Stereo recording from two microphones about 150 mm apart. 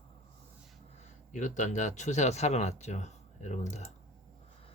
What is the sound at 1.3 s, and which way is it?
Speech, 55° left (ahead or behind).